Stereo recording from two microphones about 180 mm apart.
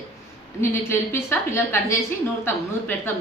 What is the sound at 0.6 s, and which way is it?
A woman's voice, 15° left (ahead or behind).